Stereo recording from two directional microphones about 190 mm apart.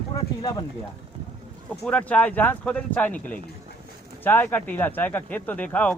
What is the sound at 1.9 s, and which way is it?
Speech, 5° left (ahead or behind).